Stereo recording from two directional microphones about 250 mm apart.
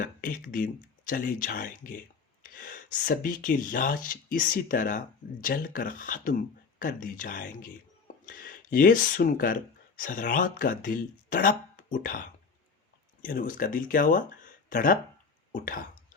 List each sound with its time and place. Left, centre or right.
0.0 s speech: left
13.2 s speech: left